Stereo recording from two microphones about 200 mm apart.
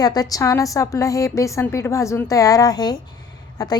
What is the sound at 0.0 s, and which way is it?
A woman's voice, 20° left (ahead or behind).